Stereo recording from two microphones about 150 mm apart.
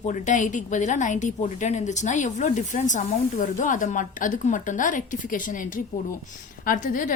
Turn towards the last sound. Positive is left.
turn(degrees=60)  # may be behind; listen again after turning